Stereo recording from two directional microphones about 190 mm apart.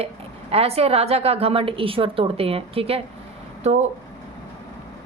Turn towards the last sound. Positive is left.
turn(degrees=-35)  # may be behind; listen again after turning